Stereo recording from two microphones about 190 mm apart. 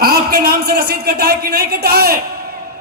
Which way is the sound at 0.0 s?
55° right (ahead or behind).